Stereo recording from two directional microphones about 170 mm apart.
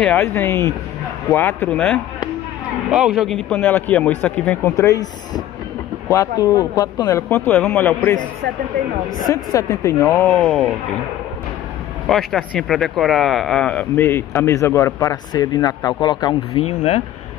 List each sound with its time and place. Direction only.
0.0 s speech: 10° left (ahead or behind)
9.3 s speech: 20° left (ahead or behind)
10.4 s speech: centre (ahead or behind)
12.1 s speech: centre (ahead or behind); by 16.6 s 25° left (ahead or behind)